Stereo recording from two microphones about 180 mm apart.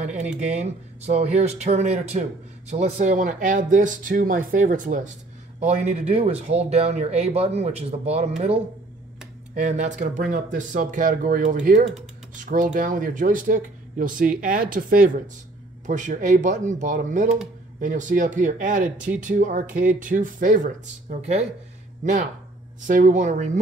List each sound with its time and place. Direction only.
0.4 s speech: 40° right (ahead or behind)
9.7 s speech: 40° right (ahead or behind)
22.8 s speech: 45° right (ahead or behind)